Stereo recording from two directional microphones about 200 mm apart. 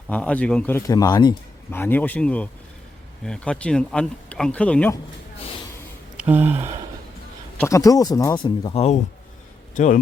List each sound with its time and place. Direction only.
0.1 s speech: 5° left (ahead or behind)
1.7 s speech: 10° left (ahead or behind)
6.1 s speech: 10° right (ahead or behind)
7.6 s speech: 15° left (ahead or behind); by 10.0 s 40° left (ahead or behind)